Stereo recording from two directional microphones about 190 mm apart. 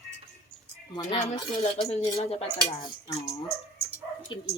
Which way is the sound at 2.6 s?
25° left (ahead or behind).